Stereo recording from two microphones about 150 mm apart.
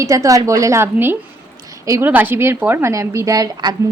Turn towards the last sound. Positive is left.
turn(degrees=-25)  # may be behind; listen again after turning